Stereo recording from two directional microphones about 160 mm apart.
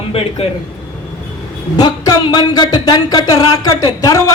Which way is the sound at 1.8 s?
25° left (ahead or behind).